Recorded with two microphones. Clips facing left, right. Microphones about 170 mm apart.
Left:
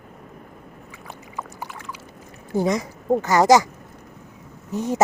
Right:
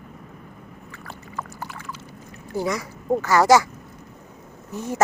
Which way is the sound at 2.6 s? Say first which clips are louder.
Left 4 dB; 20° left (ahead or behind).